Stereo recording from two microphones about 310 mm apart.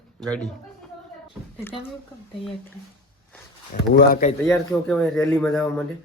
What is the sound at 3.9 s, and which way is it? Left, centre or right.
Speech, left.